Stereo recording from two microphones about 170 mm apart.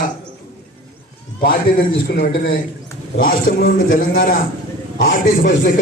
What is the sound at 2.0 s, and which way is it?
Speech, 65° left (ahead or behind).